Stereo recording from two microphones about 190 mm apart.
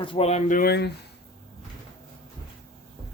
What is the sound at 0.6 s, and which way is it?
Speech, 60° left (ahead or behind).